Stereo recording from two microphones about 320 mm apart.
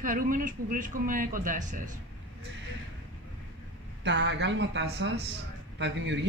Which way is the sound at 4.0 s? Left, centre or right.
Right.